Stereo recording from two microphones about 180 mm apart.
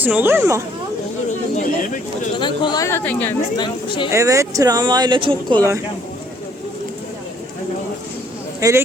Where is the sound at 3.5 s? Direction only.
25° left (ahead or behind).